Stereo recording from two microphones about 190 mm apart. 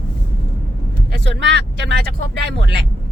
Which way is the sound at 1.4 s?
65° right (ahead or behind).